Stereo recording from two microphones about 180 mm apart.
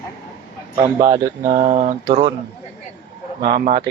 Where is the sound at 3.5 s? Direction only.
50° right (ahead or behind).